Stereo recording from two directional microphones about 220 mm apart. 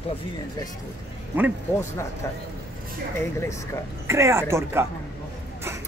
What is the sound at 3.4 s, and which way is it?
Speech, 15° left (ahead or behind).